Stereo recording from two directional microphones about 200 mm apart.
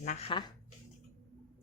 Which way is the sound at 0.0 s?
40° left (ahead or behind).